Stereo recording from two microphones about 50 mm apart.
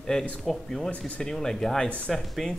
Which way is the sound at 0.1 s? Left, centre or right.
Centre.